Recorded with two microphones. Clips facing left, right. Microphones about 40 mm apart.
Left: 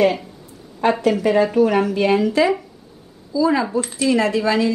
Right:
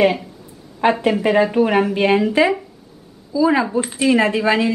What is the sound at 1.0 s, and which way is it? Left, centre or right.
Speech, right.